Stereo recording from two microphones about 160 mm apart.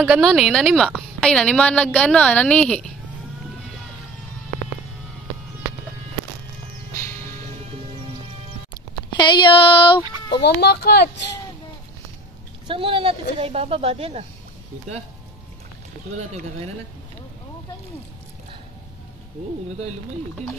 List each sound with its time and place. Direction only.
0.0 s a woman's voice: centre (ahead or behind)
9.2 s speech: 30° left (ahead or behind)
10.4 s speech: 85° left
12.6 s speech: 35° right (ahead or behind)
16.2 s speech: 45° right (ahead or behind)